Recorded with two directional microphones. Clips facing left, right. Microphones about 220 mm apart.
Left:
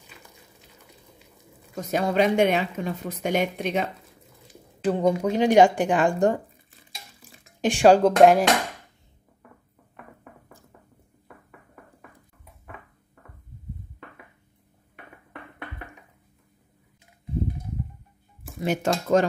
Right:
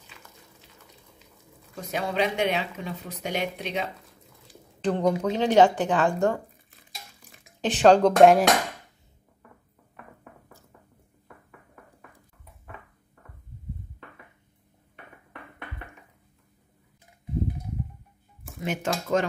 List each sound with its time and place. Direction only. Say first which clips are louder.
1.9 s speech: left 5 dB; 50° left (ahead or behind)
4.8 s speech: left 2 dB; 10° left (ahead or behind)
7.6 s speech: left 1 dB; 10° left (ahead or behind)
18.6 s speech: left 4 dB; 35° left (ahead or behind)